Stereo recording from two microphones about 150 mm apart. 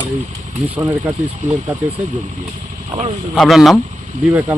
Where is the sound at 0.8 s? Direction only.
15° right (ahead or behind).